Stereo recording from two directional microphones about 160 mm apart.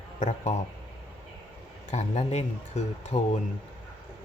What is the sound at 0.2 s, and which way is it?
Speech, 45° left (ahead or behind).